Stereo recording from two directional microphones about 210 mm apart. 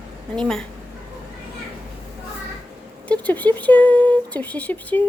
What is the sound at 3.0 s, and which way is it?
Speech, 5° left (ahead or behind).